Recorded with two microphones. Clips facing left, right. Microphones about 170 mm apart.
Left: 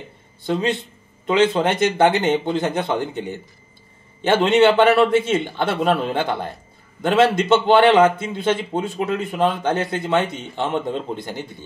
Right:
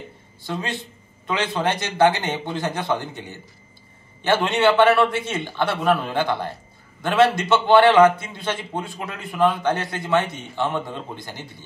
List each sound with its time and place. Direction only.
0.5 s a man's voice: 20° left (ahead or behind)